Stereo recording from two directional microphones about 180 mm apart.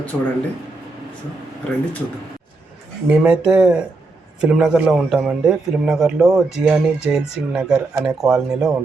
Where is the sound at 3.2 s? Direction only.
5° right (ahead or behind).